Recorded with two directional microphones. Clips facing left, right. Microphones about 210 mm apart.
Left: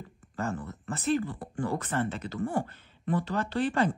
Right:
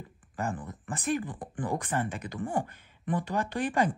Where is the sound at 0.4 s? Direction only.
15° right (ahead or behind).